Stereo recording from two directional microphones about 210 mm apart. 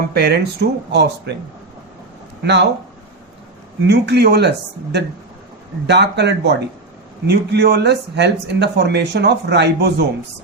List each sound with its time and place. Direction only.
0.1 s speech: 50° right (ahead or behind)
2.4 s speech: 55° right (ahead or behind)
3.8 s speech: 55° right (ahead or behind)